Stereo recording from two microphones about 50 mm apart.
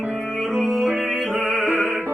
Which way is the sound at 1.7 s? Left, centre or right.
Right.